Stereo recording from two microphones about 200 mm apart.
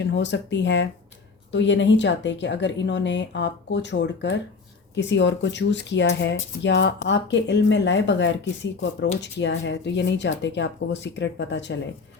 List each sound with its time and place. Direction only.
0.0 s speech: 60° left (ahead or behind)